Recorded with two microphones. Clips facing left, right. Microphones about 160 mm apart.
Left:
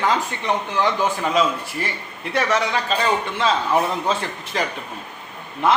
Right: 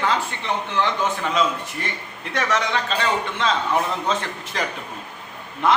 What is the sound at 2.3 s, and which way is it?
A man's voice, 5° left (ahead or behind).